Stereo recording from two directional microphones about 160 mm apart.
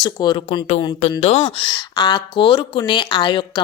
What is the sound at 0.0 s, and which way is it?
Speech, 25° left (ahead or behind).